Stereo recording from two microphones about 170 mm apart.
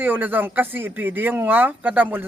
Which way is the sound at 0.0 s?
10° right (ahead or behind).